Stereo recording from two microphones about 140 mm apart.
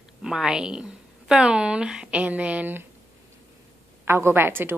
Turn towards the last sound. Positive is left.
turn(degrees=-15)  # may be behind; listen again after turning